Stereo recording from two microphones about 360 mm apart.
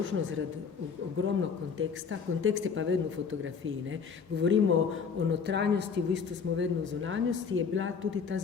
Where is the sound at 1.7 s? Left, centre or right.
Right.